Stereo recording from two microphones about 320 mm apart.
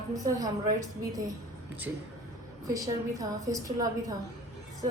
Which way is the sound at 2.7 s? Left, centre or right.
Centre.